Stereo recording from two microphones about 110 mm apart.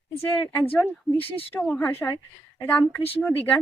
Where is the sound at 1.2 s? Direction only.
60° left (ahead or behind).